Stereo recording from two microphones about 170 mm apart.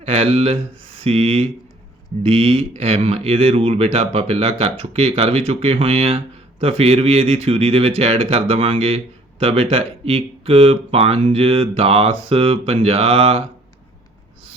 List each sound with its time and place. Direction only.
0.0 s speech: 35° right (ahead or behind)